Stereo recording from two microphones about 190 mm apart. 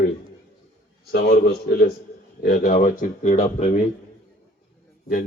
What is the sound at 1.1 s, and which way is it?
Speech, 60° left (ahead or behind).